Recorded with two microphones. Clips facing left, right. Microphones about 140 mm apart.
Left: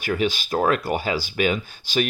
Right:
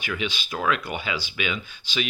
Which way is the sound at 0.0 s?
40° left (ahead or behind).